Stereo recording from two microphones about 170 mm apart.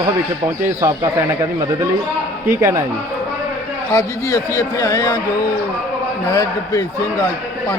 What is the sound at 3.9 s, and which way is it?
A man's voice, 20° left (ahead or behind).